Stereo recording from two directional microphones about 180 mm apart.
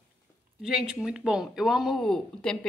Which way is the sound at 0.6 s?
5° right (ahead or behind).